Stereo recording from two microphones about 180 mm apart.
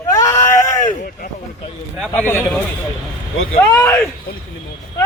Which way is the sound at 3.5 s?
10° left (ahead or behind).